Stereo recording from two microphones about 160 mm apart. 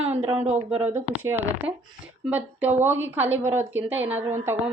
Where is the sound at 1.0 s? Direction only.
15° right (ahead or behind).